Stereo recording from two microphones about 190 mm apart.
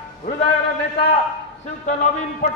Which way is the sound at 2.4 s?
40° left (ahead or behind).